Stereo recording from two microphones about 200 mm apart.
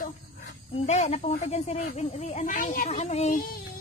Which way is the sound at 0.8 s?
35° left (ahead or behind).